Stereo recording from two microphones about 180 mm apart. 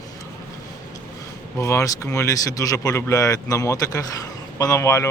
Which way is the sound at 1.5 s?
15° left (ahead or behind).